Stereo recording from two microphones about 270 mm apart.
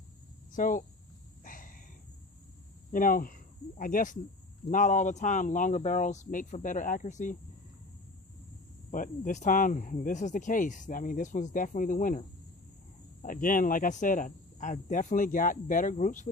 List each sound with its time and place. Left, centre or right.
0.5 s speech: left
1.5 s a sound: left
2.9 s speech: left
8.9 s speech: left
13.2 s speech: left